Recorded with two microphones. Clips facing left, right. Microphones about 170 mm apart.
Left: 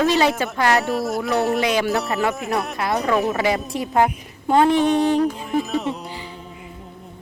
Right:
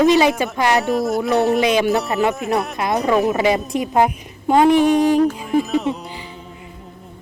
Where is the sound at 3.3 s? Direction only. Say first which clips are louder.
Right 4 dB; 20° right (ahead or behind).